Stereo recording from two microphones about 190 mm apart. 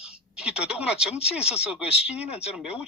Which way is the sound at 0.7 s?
5° right (ahead or behind).